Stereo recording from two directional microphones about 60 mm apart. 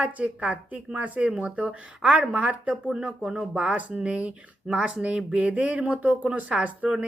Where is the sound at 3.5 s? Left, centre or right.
Right.